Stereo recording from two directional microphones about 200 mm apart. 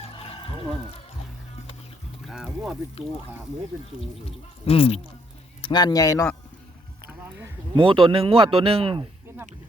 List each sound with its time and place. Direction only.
0.2 s a sound: 30° left (ahead or behind)
2.2 s music: centre (ahead or behind)
2.5 s speech: 10° right (ahead or behind)
4.3 s speech: 30° left (ahead or behind)
7.3 s a sound: 15° right (ahead or behind)
7.8 s speech: 25° right (ahead or behind)